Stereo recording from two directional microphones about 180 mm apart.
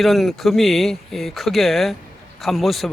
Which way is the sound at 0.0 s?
Centre (ahead or behind).